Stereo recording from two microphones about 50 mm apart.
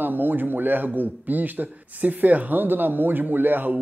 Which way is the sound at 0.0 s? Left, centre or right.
Right.